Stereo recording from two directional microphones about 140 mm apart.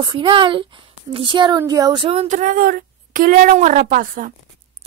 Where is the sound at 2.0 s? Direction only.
45° right (ahead or behind).